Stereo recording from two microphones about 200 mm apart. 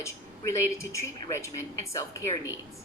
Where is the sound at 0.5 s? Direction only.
15° left (ahead or behind).